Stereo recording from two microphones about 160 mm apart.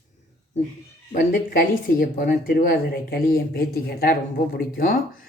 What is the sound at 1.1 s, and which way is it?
Speech, 65° left (ahead or behind).